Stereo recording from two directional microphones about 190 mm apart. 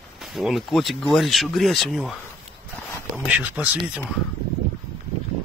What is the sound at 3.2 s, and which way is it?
Speech, 5° right (ahead or behind).